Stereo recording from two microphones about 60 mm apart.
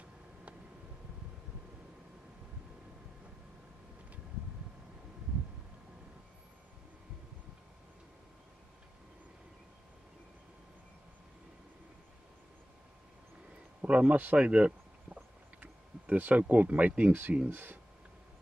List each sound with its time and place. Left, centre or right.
13.7 s speech: right